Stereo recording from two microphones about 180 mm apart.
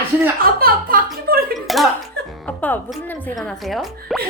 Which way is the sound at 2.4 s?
10° left (ahead or behind).